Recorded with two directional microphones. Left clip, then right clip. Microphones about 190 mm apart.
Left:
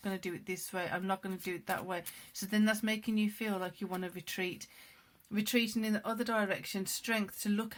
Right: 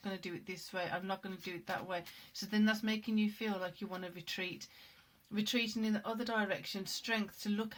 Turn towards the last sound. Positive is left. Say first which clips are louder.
# left 3 dB
turn(degrees=45)  # may be behind; listen again after turning